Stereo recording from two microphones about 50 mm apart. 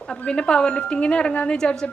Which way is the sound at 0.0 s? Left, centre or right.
Centre.